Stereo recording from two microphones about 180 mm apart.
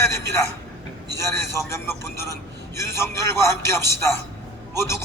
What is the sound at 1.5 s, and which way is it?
Speech, 15° left (ahead or behind).